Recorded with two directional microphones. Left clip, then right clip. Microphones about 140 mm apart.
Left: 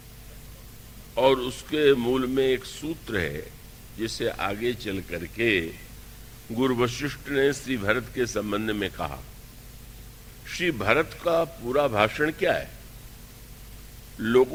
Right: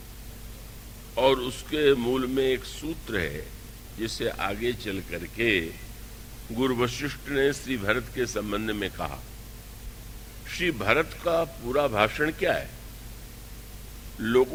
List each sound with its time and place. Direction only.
1.1 s a man's voice: 40° right (ahead or behind)
10.4 s a man's voice: 40° right (ahead or behind)
14.2 s a man's voice: 40° right (ahead or behind)